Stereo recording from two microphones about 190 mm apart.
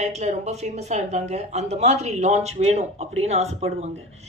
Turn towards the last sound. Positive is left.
turn(degrees=-35)  # may be behind; listen again after turning